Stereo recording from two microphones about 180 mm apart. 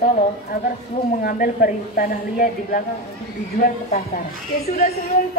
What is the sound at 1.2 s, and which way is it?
A man's voice, 50° left (ahead or behind).